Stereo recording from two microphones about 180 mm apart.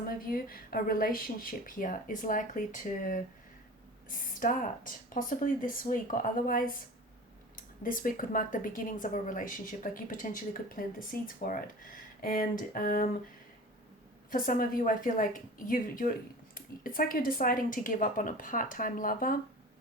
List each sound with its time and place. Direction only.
0.1 s speech: 55° left (ahead or behind)
14.3 s speech: 50° left (ahead or behind)